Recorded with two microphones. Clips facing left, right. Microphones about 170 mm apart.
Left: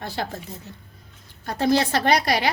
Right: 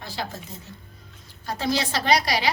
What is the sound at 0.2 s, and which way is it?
Speech, 50° left (ahead or behind).